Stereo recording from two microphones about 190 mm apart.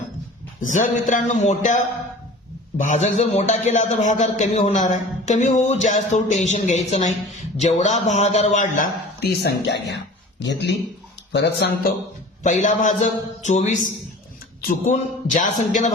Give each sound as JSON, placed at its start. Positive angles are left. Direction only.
{"t": 0.6, "sound": "a man's voice", "side_deg": 40}
{"t": 12.4, "sound": "a man's voice", "side_deg": 40}